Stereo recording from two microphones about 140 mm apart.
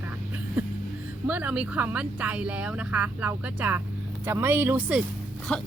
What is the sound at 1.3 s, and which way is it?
A woman's voice, 10° right (ahead or behind).